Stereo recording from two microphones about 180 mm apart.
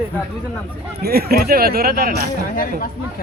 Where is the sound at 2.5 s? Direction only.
50° left (ahead or behind).